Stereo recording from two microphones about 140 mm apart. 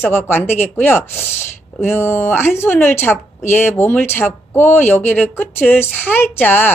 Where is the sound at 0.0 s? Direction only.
15° left (ahead or behind).